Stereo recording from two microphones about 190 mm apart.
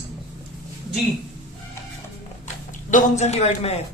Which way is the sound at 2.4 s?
40° left (ahead or behind).